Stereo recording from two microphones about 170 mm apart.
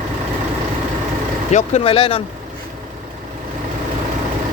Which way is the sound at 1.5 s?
40° left (ahead or behind).